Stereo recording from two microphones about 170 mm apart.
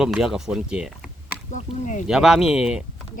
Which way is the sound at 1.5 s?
45° left (ahead or behind).